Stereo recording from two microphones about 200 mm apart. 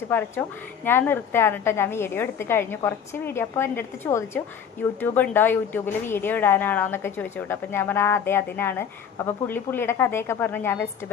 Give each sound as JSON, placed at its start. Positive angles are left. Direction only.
{"t": 0.1, "sound": "a woman's voice", "side_deg": 10}